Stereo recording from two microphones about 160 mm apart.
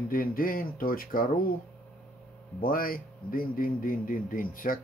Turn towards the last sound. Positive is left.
turn(degrees=60)  # may be behind; listen again after turning